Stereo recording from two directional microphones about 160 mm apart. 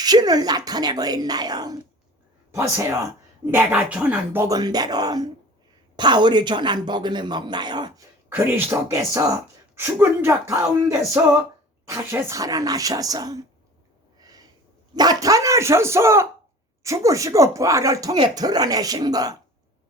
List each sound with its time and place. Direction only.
0.0 s speech: 25° right (ahead or behind)
8.3 s speech: 10° right (ahead or behind)
14.2 s a sound: 25° right (ahead or behind)
14.9 s speech: 25° right (ahead or behind)